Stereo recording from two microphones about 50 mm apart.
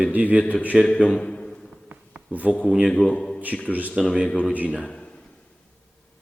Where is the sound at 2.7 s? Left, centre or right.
Centre.